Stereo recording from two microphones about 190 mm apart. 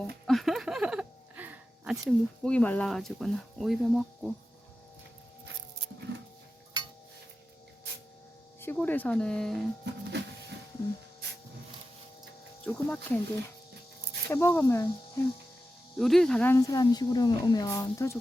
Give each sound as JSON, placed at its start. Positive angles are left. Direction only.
{"t": 0.3, "sound": "a sound", "side_deg": 0}
{"t": 6.8, "sound": "a sound", "side_deg": -25}
{"t": 8.6, "sound": "speech", "side_deg": 10}
{"t": 9.8, "sound": "music", "side_deg": -65}
{"t": 12.6, "sound": "speech", "side_deg": 10}
{"t": 14.3, "sound": "speech", "side_deg": 10}
{"t": 16.0, "sound": "speech", "side_deg": 0}